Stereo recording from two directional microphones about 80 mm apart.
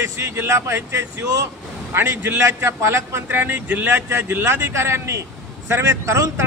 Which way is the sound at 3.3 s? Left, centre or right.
Right.